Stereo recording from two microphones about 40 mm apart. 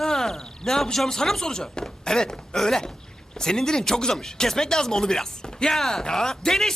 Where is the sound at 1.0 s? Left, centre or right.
Centre.